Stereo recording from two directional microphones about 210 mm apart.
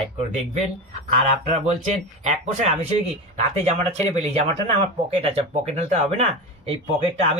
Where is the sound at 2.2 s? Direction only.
35° right (ahead or behind).